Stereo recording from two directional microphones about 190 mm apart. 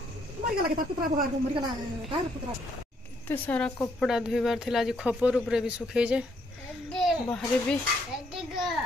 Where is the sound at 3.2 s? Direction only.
10° left (ahead or behind).